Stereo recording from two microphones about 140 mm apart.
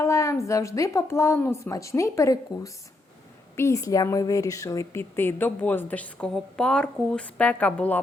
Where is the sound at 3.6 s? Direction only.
20° left (ahead or behind).